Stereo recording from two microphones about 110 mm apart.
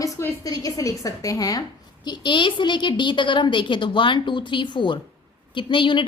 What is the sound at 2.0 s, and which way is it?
A woman's voice, 45° left (ahead or behind).